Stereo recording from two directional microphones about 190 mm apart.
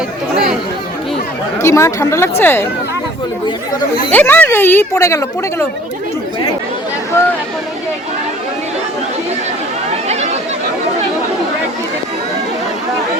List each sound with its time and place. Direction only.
1.6 s a woman's voice: 15° left (ahead or behind)
4.1 s a woman's voice: 10° left (ahead or behind)
7.1 s a woman's voice: 15° left (ahead or behind)
10.1 s chatter: 35° right (ahead or behind)